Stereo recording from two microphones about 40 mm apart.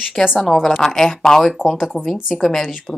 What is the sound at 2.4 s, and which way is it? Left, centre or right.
Speech, centre.